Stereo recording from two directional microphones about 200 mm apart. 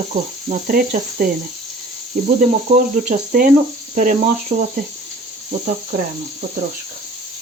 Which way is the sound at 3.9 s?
40° right (ahead or behind).